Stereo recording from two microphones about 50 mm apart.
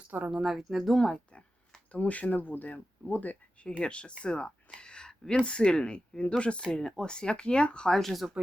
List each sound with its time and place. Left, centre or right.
0.3 s speech: centre
1.0 s a sound: centre
2.0 s speech: left
3.7 s speech: left
6.7 s speech: centre
7.9 s speech: centre